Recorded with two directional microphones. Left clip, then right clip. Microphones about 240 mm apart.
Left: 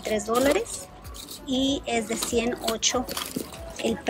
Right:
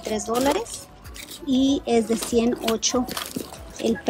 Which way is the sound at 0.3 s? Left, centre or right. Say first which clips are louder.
Even; centre.